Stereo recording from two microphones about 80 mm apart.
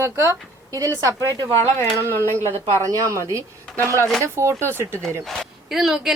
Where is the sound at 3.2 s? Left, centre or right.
Right.